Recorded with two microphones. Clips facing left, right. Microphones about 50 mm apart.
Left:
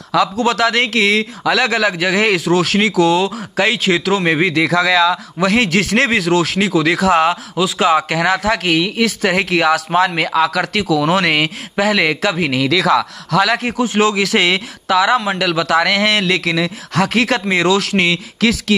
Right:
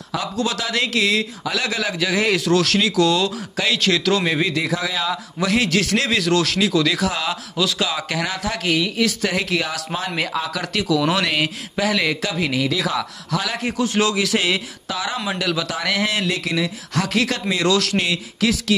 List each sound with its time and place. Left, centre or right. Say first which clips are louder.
0.4 s speech: left 7 dB; left
2.4 s speech: left 3 dB; left
4.2 s speech: left 6 dB; left
4.6 s speech: left 9 dB; left
5.4 s speech: left 4 dB; left
6.3 s speech: left 3 dB; left
10.0 s a man's voice: left 8 dB; left
10.7 s speech: left 4 dB; left
12.5 s a man's voice: left 10 dB; left
13.7 s a man's voice: left 5 dB; left
16.9 s speech: left 6 dB; left